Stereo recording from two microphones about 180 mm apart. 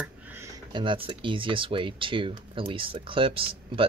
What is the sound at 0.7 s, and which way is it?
Speech, 30° right (ahead or behind).